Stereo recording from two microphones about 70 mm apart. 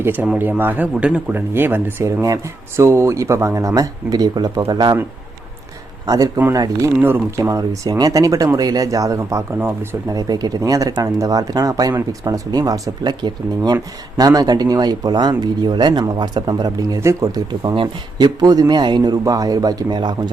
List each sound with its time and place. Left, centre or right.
0.0 s a man's voice: right
1.3 s speech: right
6.1 s speech: right
7.0 s speech: right
7.5 s speech: right
13.0 s speech: right
14.2 s speech: right
17.0 s speech: right
17.3 s speech: right
18.2 s speech: right
18.7 s speech: right
19.2 s speech: right